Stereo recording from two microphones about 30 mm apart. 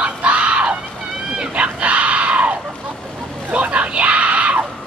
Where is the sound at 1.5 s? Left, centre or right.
Right.